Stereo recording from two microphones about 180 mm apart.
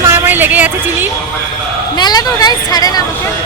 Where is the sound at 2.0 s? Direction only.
20° left (ahead or behind).